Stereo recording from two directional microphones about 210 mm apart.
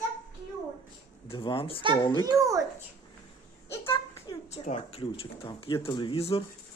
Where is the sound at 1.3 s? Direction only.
25° left (ahead or behind).